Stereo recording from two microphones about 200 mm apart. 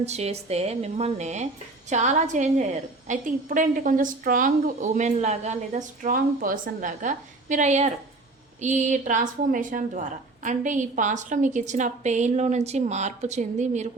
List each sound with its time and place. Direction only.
0.0 s a woman's voice: 35° right (ahead or behind)